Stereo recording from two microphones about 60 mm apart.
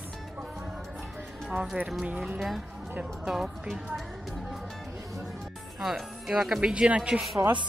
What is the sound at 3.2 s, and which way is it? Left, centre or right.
Speech, centre.